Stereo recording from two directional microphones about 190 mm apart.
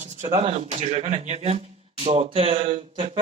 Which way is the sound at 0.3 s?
35° right (ahead or behind).